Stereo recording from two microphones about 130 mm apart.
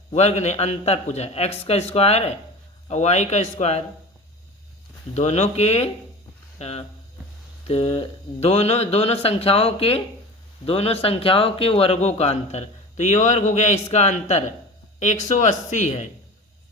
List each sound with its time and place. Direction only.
0.1 s a man's voice: 55° left (ahead or behind)
5.1 s a man's voice: 60° left (ahead or behind)